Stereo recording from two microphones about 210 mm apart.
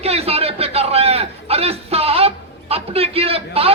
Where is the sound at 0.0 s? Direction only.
30° right (ahead or behind).